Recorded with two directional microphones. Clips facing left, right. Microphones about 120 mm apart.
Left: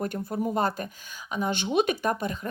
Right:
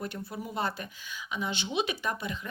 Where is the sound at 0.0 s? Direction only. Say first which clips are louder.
Left 8 dB; 45° left (ahead or behind).